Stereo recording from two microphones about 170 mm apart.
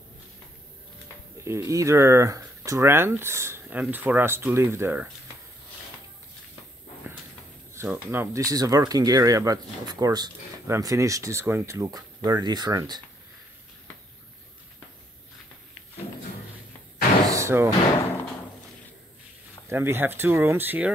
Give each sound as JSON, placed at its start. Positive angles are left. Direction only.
{"t": 1.4, "sound": "speech", "side_deg": -20}
{"t": 7.7, "sound": "speech", "side_deg": -15}
{"t": 17.3, "sound": "slam", "side_deg": -15}
{"t": 19.7, "sound": "speech", "side_deg": -15}